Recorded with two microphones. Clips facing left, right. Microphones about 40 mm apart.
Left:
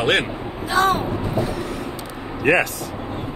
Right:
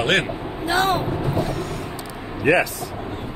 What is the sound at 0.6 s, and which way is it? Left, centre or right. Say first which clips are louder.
Speech: left 1 dB; right.